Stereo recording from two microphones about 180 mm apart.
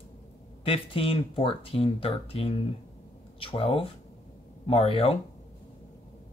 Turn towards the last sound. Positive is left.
turn(degrees=35)  # may be behind; listen again after turning